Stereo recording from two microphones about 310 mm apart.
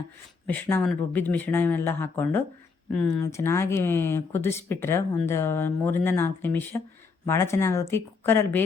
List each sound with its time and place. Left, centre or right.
0.4 s speech: centre